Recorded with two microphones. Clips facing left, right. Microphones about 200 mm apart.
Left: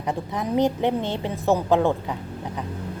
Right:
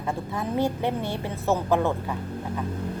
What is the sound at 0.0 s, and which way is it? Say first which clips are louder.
A woman's voice: left 2 dB; 20° left (ahead or behind).